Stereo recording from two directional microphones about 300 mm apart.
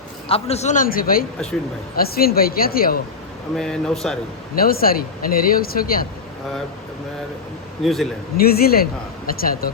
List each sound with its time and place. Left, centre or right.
0.3 s speech: centre
3.5 s speech: centre
4.5 s speech: left
7.8 s speech: centre
8.4 s speech: left